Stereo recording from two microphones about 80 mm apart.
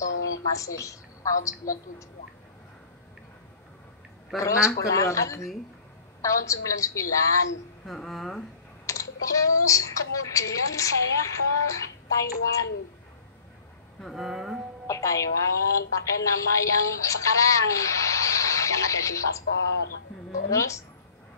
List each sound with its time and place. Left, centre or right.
0.0 s a sound: left
4.4 s a woman's voice: left
7.8 s speech: centre
8.8 s a woman's voice: left
14.0 s a sound: centre
14.9 s a woman's voice: left
20.4 s a woman's voice: left